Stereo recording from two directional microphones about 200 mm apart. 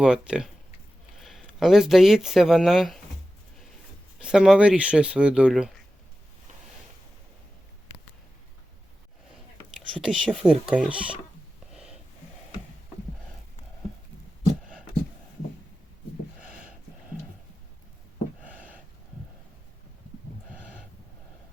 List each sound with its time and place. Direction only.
0.0 s speech: 5° right (ahead or behind)
4.2 s speech: 5° right (ahead or behind)
10.0 s speech: 5° right (ahead or behind)
11.7 s snort: 5° right (ahead or behind)